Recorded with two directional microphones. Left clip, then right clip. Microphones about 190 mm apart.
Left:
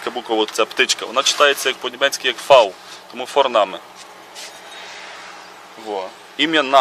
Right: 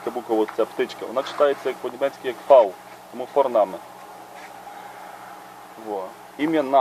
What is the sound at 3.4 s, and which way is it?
Speech, 45° left (ahead or behind).